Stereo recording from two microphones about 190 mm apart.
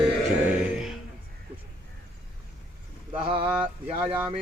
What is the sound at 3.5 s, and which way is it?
Speech, 5° right (ahead or behind).